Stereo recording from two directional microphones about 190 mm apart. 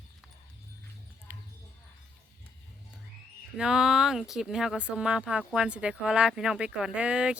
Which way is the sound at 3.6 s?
5° right (ahead or behind).